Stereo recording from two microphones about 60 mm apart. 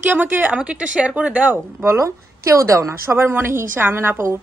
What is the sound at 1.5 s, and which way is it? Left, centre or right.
A woman's voice, right.